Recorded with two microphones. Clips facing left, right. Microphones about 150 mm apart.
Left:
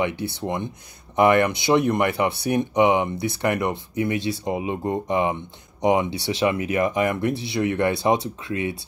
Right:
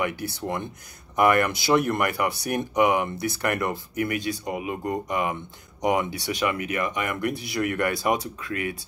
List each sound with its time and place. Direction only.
0.0 s speech: 25° left (ahead or behind)